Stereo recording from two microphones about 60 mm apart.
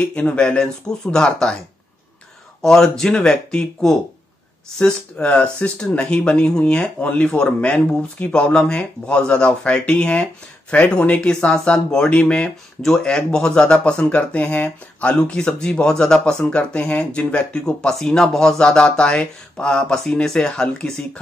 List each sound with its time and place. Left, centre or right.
0.0 s speech: left
2.6 s speech: centre